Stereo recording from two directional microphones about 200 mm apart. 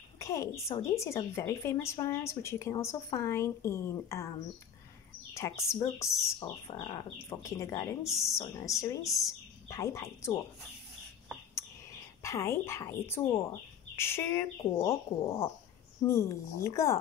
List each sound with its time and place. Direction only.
0.2 s a woman's voice: 15° left (ahead or behind)
5.3 s a woman's voice: 15° left (ahead or behind)
12.2 s a woman's voice: 15° left (ahead or behind)